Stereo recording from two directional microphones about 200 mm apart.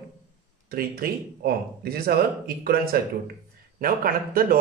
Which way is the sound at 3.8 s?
45° right (ahead or behind).